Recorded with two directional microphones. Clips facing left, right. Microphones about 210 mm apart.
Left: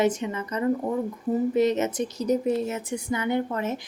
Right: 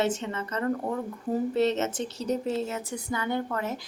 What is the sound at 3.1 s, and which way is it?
Speech, 20° left (ahead or behind).